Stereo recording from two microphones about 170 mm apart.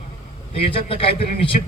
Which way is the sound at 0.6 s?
35° left (ahead or behind).